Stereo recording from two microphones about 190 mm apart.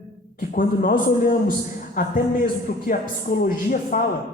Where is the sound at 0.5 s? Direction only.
45° left (ahead or behind).